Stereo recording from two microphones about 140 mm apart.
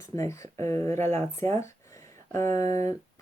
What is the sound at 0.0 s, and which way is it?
Speech, 20° left (ahead or behind).